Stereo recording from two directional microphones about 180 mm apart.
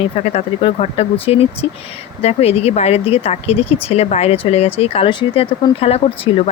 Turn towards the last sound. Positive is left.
turn(degrees=35)  # may be behind; listen again after turning